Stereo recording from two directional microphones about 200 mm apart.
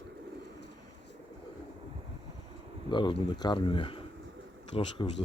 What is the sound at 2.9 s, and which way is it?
Speech, 25° left (ahead or behind).